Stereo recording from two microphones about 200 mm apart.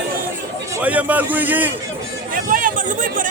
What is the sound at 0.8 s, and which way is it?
Speech, 10° right (ahead or behind).